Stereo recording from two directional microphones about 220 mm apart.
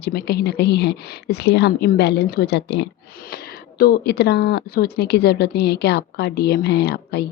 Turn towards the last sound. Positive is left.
turn(degrees=50)  # may be behind; listen again after turning